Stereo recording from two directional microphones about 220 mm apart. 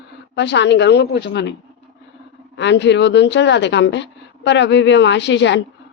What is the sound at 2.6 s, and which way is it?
A woman's voice, 55° left (ahead or behind).